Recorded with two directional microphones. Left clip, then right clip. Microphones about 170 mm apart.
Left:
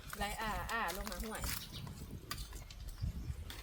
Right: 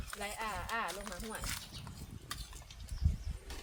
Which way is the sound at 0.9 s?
10° left (ahead or behind).